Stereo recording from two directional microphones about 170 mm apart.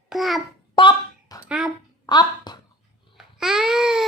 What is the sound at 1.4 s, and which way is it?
Speech, 5° right (ahead or behind).